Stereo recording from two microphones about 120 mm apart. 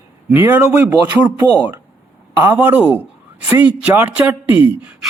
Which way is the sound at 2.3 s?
20° right (ahead or behind).